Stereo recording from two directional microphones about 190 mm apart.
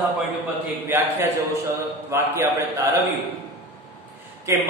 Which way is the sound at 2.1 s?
15° right (ahead or behind).